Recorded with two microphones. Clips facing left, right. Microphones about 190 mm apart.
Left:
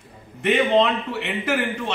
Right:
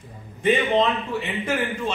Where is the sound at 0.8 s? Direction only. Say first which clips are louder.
Left 1 dB; 70° left (ahead or behind).